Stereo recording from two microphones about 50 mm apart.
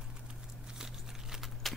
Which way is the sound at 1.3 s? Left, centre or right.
Centre.